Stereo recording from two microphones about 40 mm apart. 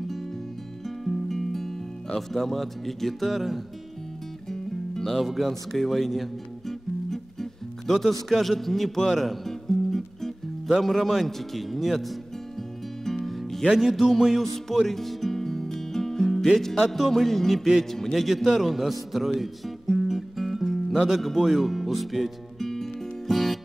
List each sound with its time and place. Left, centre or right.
0.8 s music: centre
2.1 s speech: centre
3.3 s music: centre
4.5 s music: centre
5.2 s speech: centre
5.5 s music: centre
7.9 s a man's voice: centre
11.2 s music: centre
16.8 s a man's voice: centre
18.3 s music: centre